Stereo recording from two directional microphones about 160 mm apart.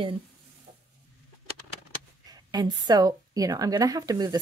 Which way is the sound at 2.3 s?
25° right (ahead or behind).